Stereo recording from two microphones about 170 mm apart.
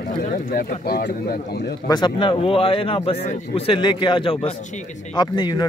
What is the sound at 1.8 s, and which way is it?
A man's voice, 25° left (ahead or behind).